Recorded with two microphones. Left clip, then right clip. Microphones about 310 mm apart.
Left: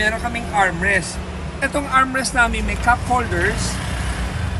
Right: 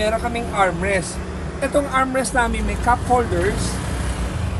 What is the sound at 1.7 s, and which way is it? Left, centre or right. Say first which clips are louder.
Speech: left 1 dB; centre.